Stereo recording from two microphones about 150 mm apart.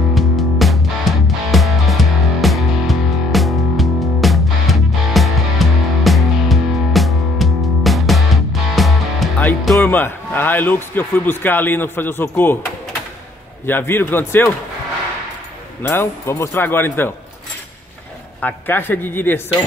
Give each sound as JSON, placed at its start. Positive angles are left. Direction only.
{"t": 0.1, "sound": "music", "side_deg": 0}
{"t": 9.9, "sound": "a man's voice", "side_deg": 15}
{"t": 13.7, "sound": "a man's voice", "side_deg": 15}
{"t": 15.9, "sound": "a man's voice", "side_deg": 15}
{"t": 18.4, "sound": "a man's voice", "side_deg": 15}